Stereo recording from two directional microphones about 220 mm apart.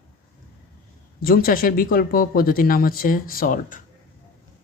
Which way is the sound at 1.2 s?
40° left (ahead or behind).